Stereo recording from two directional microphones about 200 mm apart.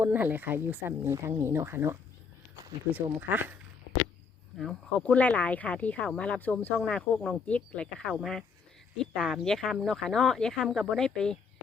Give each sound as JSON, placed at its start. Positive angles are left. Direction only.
{"t": 0.0, "sound": "speech", "side_deg": -10}
{"t": 4.5, "sound": "speech", "side_deg": 0}